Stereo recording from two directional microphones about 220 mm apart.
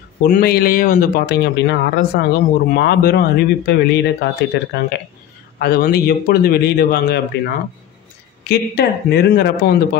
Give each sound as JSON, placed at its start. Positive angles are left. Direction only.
{"t": 0.2, "sound": "speech", "side_deg": 40}